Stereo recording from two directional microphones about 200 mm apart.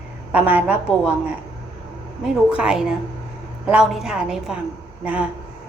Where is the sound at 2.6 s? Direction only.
5° right (ahead or behind).